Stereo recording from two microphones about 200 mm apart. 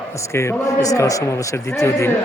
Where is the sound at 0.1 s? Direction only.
15° left (ahead or behind).